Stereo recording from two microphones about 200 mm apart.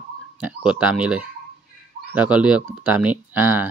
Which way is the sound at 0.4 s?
5° right (ahead or behind).